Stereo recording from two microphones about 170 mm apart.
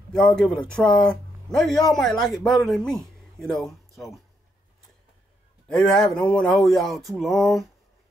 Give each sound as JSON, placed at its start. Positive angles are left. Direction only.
{"t": 0.4, "sound": "speech", "side_deg": 5}
{"t": 5.7, "sound": "speech", "side_deg": 5}